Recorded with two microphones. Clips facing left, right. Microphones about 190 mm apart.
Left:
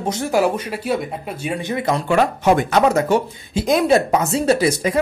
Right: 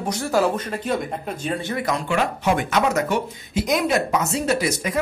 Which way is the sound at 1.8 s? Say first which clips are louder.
Left 6 dB; 35° left (ahead or behind).